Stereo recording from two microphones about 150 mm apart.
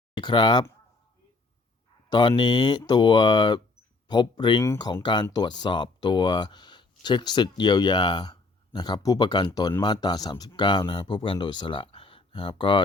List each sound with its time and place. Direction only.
0.2 s speech: 30° left (ahead or behind)
2.0 s speech: 30° left (ahead or behind)